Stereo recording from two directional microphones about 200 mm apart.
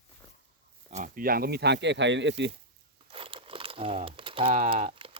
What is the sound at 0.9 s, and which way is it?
Speech, 40° right (ahead or behind).